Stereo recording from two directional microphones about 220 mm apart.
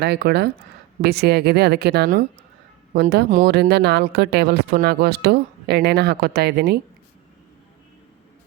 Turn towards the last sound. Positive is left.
turn(degrees=-45)  # may be behind; listen again after turning